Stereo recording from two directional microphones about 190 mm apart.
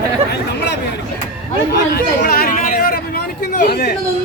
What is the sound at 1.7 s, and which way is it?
Chatter, 50° left (ahead or behind).